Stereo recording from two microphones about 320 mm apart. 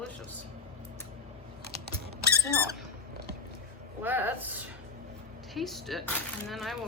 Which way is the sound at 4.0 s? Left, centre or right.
Centre.